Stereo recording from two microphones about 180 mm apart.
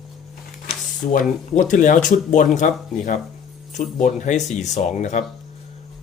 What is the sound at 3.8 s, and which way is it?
Speech, 45° left (ahead or behind).